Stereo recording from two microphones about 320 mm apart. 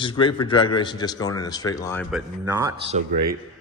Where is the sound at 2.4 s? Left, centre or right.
Centre.